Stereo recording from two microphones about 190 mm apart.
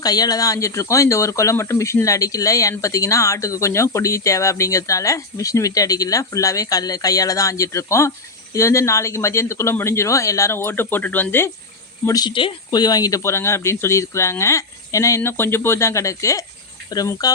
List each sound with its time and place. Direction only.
0.0 s speech: 20° left (ahead or behind)